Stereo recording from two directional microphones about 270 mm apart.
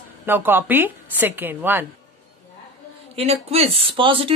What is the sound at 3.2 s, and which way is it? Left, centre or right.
Speech, right.